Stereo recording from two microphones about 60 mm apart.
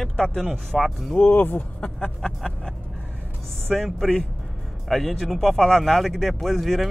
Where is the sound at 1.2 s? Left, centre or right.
Left.